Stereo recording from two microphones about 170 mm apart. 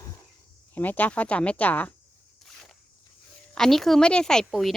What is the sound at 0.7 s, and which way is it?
Speech, 10° left (ahead or behind).